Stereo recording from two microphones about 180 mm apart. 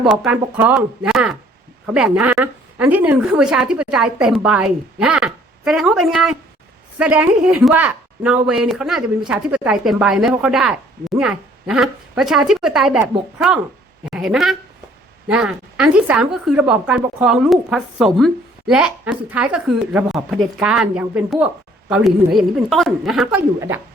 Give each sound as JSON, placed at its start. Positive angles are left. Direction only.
{"t": 0.0, "sound": "a woman's voice", "side_deg": 0}
{"t": 14.0, "sound": "a woman's voice", "side_deg": -5}
{"t": 23.6, "sound": "speech", "side_deg": -15}